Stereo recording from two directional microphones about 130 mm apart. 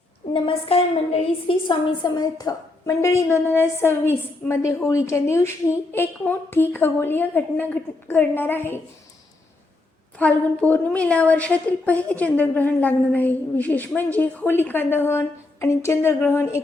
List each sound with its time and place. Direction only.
0.3 s a woman's voice: 45° left (ahead or behind)
1.6 s a woman's voice: 35° left (ahead or behind); by 8.8 s 15° left (ahead or behind)
10.2 s a woman's voice: 10° left (ahead or behind)